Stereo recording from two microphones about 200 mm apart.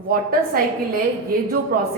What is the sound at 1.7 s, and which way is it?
Speech, 45° right (ahead or behind).